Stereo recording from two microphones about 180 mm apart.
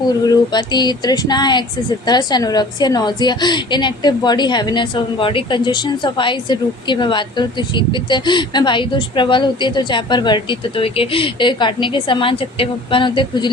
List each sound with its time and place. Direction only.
0.3 s a woman's voice: 25° left (ahead or behind)